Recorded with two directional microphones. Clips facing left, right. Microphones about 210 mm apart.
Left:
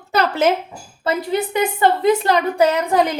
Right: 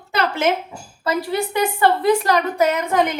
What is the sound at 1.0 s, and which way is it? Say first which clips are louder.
A woman's voice: left 1 dB; 20° left (ahead or behind).